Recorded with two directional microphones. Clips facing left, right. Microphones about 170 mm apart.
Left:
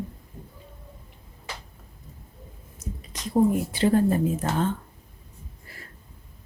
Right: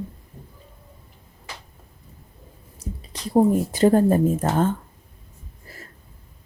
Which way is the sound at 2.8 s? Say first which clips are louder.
Right 2 dB; 35° right (ahead or behind).